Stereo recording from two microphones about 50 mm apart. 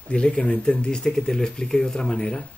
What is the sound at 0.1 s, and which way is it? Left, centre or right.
Speech, left.